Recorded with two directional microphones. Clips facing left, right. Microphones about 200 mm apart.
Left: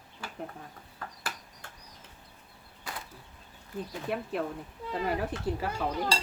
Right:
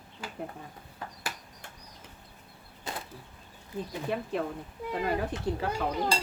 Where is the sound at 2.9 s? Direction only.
25° right (ahead or behind).